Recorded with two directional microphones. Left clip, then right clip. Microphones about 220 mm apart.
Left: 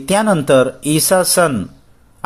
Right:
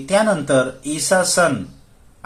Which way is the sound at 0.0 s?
40° left (ahead or behind).